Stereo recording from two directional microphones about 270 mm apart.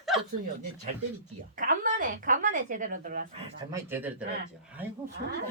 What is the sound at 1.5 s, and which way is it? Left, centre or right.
A woman's voice, right.